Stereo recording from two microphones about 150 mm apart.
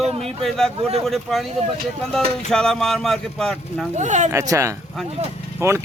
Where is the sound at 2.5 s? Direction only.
5° left (ahead or behind).